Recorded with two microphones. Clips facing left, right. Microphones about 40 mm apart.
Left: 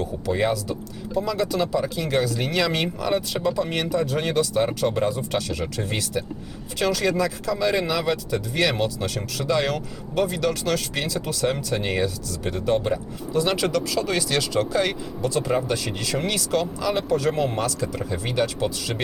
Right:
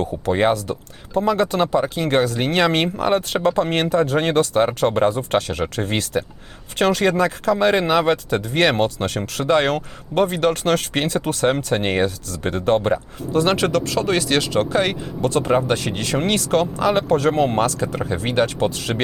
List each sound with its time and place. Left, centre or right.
0.0 s speech: right